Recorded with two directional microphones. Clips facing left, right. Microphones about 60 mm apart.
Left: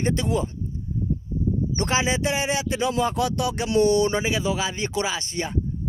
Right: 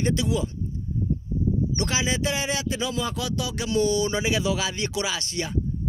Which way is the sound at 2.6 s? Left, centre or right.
Left.